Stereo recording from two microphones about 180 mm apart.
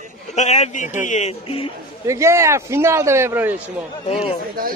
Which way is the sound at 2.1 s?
15° right (ahead or behind).